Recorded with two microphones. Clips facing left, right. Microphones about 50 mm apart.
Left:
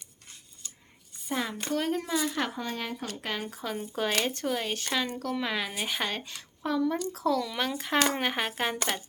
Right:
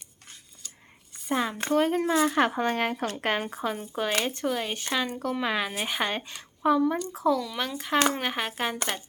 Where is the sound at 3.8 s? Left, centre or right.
Centre.